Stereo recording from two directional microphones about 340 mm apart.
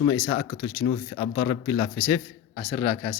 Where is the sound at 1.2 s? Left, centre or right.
Left.